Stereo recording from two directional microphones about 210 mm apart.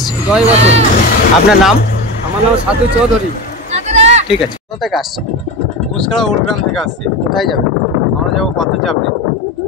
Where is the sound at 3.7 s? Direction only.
30° right (ahead or behind).